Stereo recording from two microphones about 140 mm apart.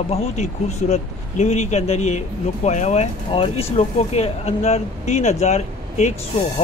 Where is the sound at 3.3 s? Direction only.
40° left (ahead or behind); by 6.1 s 55° left (ahead or behind).